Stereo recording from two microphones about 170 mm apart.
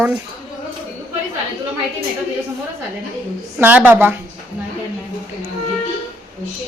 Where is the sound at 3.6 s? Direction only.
10° right (ahead or behind).